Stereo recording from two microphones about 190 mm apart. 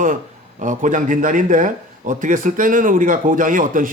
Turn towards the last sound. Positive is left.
turn(degrees=-45)  # may be behind; listen again after turning